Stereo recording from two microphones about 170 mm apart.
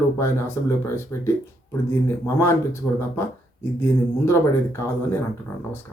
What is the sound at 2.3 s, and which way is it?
Speech, 15° left (ahead or behind).